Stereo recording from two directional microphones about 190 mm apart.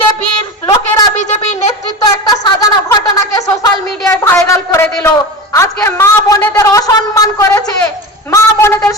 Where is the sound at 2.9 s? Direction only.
20° left (ahead or behind).